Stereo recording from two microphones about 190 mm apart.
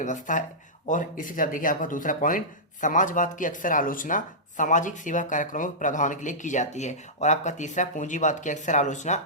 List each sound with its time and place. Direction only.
0.0 s speech: 40° left (ahead or behind)